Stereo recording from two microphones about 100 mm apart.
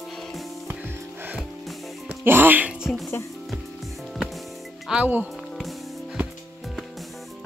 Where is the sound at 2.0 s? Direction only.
20° right (ahead or behind).